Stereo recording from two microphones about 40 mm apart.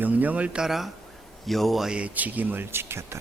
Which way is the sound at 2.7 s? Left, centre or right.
Right.